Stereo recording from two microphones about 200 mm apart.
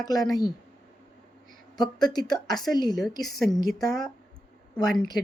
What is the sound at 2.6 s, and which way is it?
Speech, 20° left (ahead or behind).